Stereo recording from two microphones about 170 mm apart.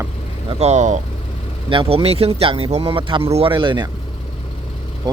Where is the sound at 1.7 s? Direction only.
30° right (ahead or behind).